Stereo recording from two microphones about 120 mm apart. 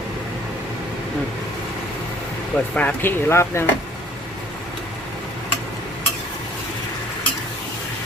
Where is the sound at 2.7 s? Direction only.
15° left (ahead or behind).